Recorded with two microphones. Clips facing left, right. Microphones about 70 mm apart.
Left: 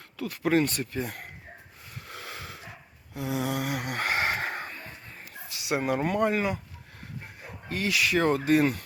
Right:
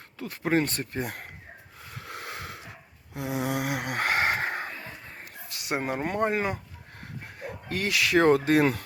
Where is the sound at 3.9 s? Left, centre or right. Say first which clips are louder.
Right 3 dB; right.